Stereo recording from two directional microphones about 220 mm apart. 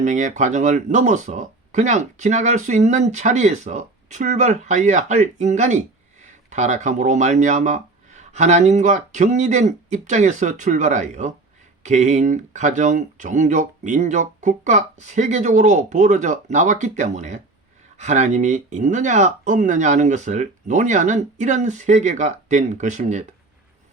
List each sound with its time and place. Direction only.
0.0 s speech: 35° right (ahead or behind)